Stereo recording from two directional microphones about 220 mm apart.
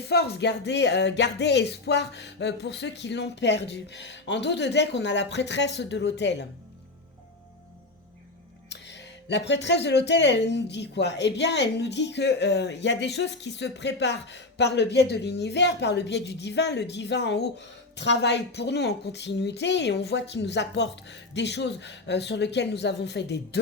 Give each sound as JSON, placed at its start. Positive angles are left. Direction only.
{"t": 0.0, "sound": "speech", "side_deg": 45}
{"t": 8.7, "sound": "speech", "side_deg": 55}